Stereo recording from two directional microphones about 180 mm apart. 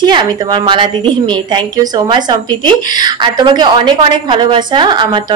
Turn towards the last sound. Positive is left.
turn(degrees=-25)  # may be behind; listen again after turning